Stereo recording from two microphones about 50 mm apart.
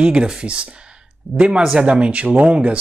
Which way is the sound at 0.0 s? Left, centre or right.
Right.